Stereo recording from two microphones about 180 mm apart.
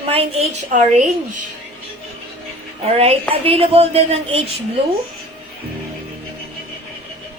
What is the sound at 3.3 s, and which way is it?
A woman's voice, 30° right (ahead or behind).